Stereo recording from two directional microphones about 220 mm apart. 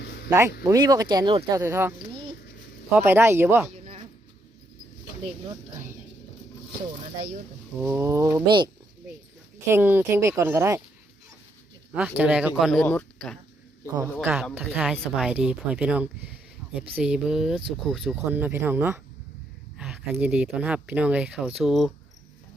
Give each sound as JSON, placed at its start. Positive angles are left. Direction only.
{"t": 0.0, "sound": "a sound", "side_deg": 50}
{"t": 0.3, "sound": "speech", "side_deg": -10}
{"t": 7.8, "sound": "speech", "side_deg": -10}
{"t": 9.7, "sound": "speech", "side_deg": -10}
{"t": 11.9, "sound": "speech", "side_deg": -5}
{"t": 13.8, "sound": "speech", "side_deg": -10}